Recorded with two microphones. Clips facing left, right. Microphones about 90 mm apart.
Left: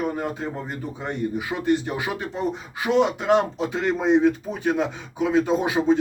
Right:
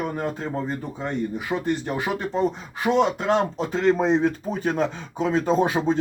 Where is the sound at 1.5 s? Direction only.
25° right (ahead or behind).